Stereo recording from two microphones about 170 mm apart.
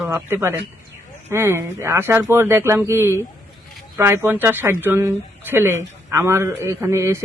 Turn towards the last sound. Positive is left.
turn(degrees=-15)  # may be behind; listen again after turning